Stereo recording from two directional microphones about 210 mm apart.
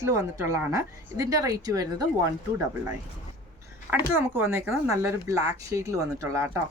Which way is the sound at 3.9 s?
10° right (ahead or behind).